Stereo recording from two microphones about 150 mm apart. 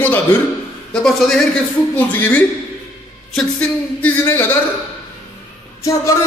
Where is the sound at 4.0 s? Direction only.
15° left (ahead or behind).